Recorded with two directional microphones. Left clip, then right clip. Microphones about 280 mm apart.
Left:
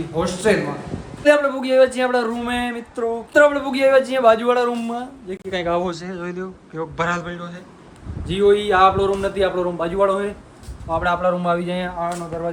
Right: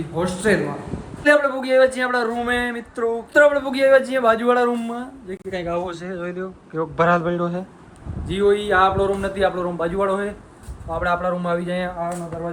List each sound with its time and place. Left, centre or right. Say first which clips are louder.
0.1 s a man's voice: left 1 dB; centre
5.5 s speech: left 4 dB; left
5.9 s a man's voice: even; centre
8.3 s a man's voice: left 2 dB; centre